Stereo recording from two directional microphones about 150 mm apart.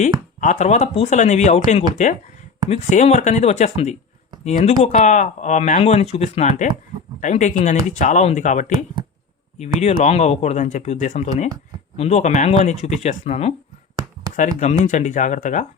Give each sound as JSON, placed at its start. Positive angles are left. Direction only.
{"t": 0.0, "sound": "speech", "side_deg": 55}
{"t": 10.0, "sound": "speech", "side_deg": 45}